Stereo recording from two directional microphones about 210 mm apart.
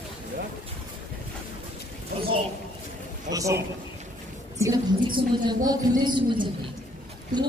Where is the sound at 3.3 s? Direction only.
15° right (ahead or behind).